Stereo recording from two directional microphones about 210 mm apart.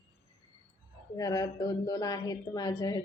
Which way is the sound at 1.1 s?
15° left (ahead or behind).